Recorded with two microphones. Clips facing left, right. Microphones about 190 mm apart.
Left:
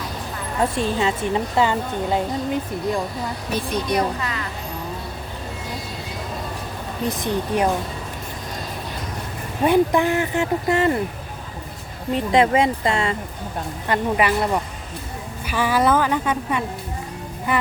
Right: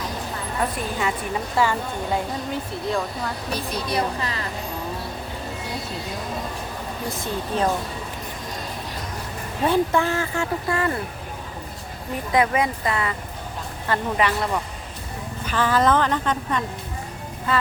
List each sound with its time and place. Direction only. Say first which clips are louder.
0.6 s a woman's voice: left 5 dB; 25° left (ahead or behind)
3.5 s speech: left 5 dB; 30° right (ahead or behind)
7.1 s speech: left 4 dB; 20° left (ahead or behind)
9.6 s speech: left 3 dB; 15° left (ahead or behind)
12.1 s a woman's voice: left 4 dB; 25° left (ahead or behind)
13.8 s speech: left 2 dB; 15° left (ahead or behind)